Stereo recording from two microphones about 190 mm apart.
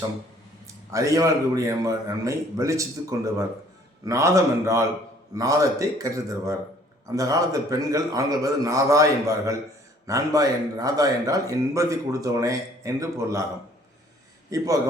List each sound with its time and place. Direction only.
0.9 s speech: 15° right (ahead or behind)
14.5 s speech: 15° right (ahead or behind)